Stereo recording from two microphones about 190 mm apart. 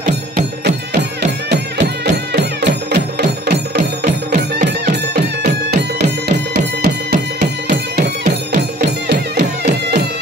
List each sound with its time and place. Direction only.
1.2 s music: 65° right (ahead or behind)